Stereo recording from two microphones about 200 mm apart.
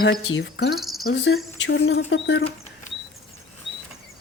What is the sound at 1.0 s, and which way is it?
Speech, 60° left (ahead or behind).